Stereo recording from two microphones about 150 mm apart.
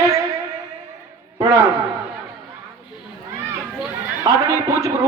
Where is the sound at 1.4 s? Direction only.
20° right (ahead or behind).